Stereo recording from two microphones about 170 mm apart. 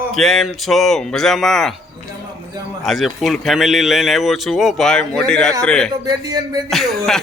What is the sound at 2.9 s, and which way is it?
Speech, centre (ahead or behind).